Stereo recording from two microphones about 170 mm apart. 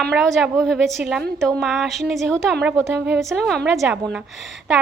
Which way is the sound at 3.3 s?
Centre (ahead or behind).